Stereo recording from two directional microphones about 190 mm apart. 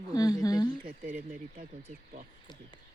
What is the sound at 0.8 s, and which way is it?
Speech, 45° right (ahead or behind).